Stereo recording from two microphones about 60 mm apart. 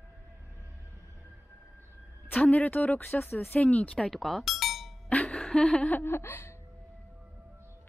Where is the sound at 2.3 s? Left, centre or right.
Left.